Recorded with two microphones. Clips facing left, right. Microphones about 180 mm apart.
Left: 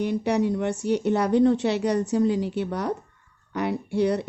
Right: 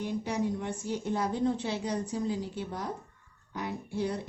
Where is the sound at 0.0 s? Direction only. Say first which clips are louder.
Left 8 dB; 75° left (ahead or behind).